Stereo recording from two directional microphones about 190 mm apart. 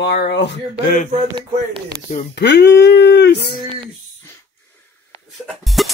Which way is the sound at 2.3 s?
65° left (ahead or behind).